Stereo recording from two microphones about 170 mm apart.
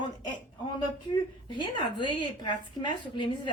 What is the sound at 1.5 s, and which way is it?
A woman's voice, 30° left (ahead or behind).